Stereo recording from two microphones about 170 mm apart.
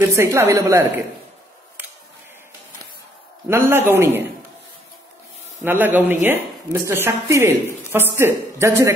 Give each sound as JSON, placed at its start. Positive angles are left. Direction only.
{"t": 0.1, "sound": "speech", "side_deg": -15}
{"t": 3.4, "sound": "speech", "side_deg": -15}
{"t": 5.6, "sound": "speech", "side_deg": -10}